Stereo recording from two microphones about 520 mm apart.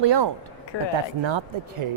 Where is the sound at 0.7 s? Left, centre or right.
Left.